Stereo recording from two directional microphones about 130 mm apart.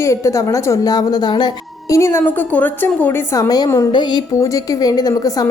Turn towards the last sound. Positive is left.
turn(degrees=30)  # may be behind; listen again after turning